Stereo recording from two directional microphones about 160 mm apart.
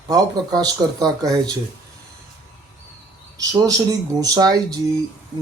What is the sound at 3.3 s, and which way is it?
Speech, 20° right (ahead or behind).